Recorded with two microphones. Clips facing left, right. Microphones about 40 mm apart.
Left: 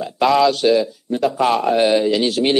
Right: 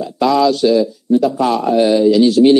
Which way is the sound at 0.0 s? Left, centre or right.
Left.